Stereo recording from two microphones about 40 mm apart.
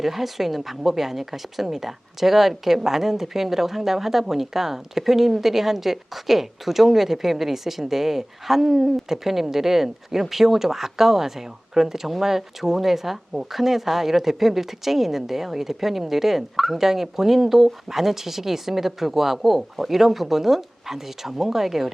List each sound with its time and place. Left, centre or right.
0.0 s a woman's voice: centre